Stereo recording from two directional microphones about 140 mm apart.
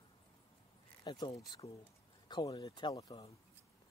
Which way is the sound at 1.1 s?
35° left (ahead or behind).